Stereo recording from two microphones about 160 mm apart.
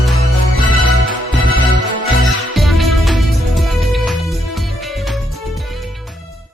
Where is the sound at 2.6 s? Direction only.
Centre (ahead or behind).